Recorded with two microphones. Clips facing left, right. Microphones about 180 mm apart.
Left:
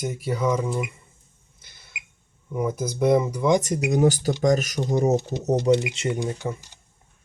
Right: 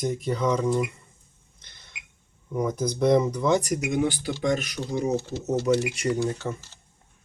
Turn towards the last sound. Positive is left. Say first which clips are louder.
# even
turn(degrees=15)  # may be behind; listen again after turning